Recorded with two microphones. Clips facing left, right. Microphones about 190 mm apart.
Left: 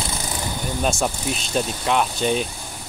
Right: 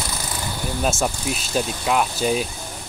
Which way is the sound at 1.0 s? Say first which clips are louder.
Even; centre (ahead or behind).